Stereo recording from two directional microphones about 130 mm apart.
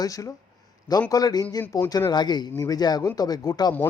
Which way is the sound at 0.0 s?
25° left (ahead or behind).